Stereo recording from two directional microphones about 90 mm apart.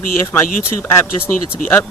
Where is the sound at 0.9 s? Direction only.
30° left (ahead or behind).